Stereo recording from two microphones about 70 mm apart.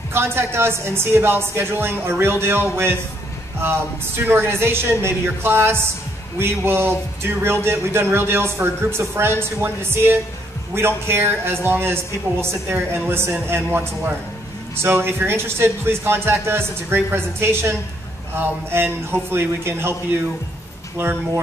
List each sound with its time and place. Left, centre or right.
0.1 s speech: right
4.3 s speech: right